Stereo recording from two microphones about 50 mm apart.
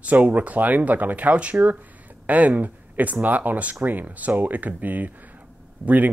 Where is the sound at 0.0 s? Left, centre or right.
Right.